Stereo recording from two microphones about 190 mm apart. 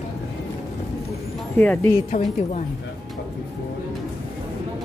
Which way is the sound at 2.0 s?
40° left (ahead or behind).